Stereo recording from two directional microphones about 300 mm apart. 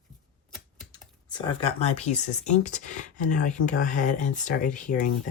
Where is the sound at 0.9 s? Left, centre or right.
Centre.